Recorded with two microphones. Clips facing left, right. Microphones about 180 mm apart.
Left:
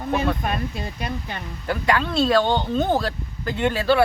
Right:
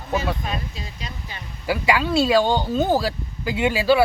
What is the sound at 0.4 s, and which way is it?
Speech, 55° left (ahead or behind).